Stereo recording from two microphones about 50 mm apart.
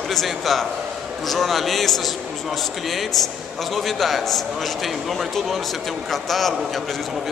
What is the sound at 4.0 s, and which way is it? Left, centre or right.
Speech, centre.